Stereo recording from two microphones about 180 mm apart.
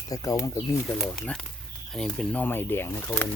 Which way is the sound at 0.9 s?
Centre (ahead or behind).